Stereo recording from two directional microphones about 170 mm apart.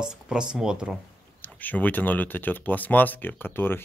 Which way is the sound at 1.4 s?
10° left (ahead or behind).